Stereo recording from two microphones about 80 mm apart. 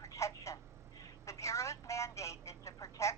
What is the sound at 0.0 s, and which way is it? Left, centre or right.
Telephone, left.